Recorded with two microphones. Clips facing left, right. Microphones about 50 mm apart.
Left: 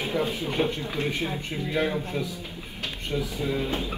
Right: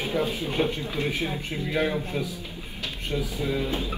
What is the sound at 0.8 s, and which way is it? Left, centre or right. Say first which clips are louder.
Speech: even; left.